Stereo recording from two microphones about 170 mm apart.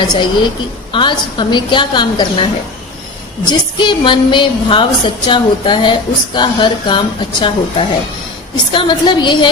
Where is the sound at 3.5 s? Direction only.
25° left (ahead or behind).